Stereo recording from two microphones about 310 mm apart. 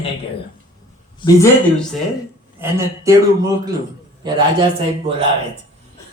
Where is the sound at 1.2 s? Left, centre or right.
Centre.